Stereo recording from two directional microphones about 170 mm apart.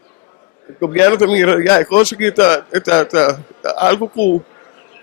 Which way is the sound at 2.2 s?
15° left (ahead or behind).